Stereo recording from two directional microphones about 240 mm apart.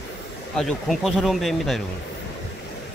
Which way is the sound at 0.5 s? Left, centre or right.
Centre.